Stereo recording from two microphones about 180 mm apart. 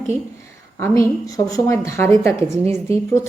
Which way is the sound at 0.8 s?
15° left (ahead or behind).